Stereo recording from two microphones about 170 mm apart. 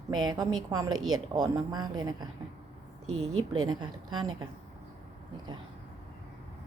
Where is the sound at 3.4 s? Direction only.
25° right (ahead or behind).